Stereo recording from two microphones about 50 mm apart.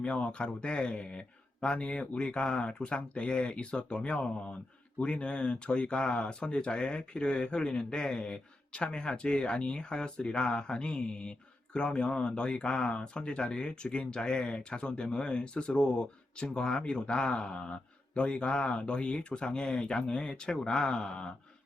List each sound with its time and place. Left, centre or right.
0.0 s speech: left